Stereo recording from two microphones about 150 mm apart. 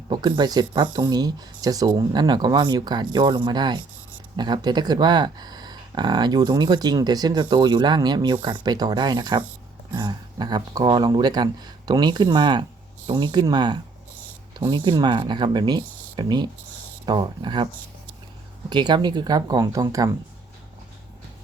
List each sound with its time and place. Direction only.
0.1 s speech: 30° right (ahead or behind)
18.7 s speech: 30° right (ahead or behind)